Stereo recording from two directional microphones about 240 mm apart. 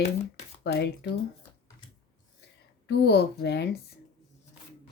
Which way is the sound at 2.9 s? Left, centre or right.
Left.